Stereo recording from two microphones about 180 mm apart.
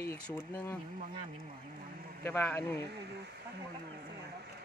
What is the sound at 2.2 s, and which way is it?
Speech, 10° left (ahead or behind).